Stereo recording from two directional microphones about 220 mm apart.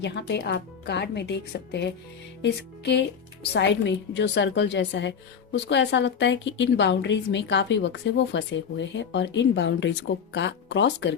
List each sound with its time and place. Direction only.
0.0 s a woman's voice: 50° left (ahead or behind)
2.4 s music: 50° left (ahead or behind)
3.5 s a woman's voice: 55° left (ahead or behind)